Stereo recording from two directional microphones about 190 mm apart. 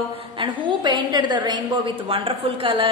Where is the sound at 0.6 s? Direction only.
25° right (ahead or behind).